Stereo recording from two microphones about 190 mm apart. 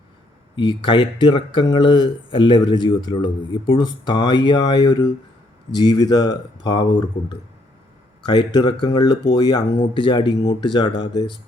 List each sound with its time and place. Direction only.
0.5 s speech: 25° left (ahead or behind)